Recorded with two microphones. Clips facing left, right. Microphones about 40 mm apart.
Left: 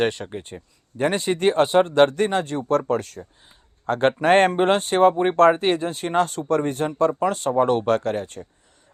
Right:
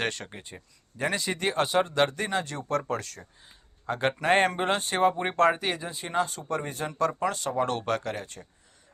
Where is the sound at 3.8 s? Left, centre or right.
Left.